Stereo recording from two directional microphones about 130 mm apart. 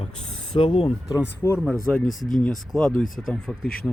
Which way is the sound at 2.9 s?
90° left.